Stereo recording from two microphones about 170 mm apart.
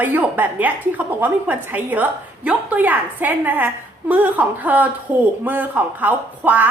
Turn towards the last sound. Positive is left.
turn(degrees=-10)  # may be behind; listen again after turning